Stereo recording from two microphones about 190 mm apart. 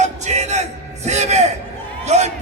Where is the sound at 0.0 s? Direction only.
35° right (ahead or behind).